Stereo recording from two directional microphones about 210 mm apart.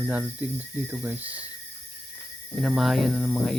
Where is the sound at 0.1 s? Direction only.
10° right (ahead or behind).